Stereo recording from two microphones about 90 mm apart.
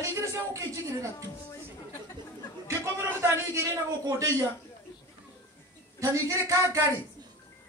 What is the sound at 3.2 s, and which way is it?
Speech, 30° right (ahead or behind).